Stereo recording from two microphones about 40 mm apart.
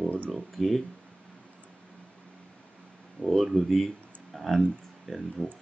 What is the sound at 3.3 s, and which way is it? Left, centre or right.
Speech, centre.